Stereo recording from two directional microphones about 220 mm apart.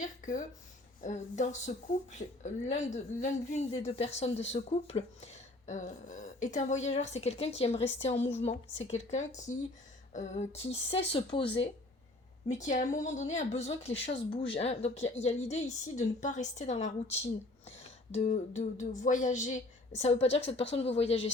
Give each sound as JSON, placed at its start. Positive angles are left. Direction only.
{"t": 0.0, "sound": "speech", "side_deg": 35}
{"t": 12.5, "sound": "speech", "side_deg": 35}